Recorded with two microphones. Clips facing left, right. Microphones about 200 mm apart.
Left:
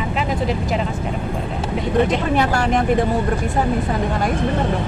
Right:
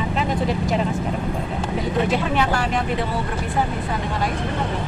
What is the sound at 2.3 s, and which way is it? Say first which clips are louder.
Speech: left 3 dB; 45° left (ahead or behind).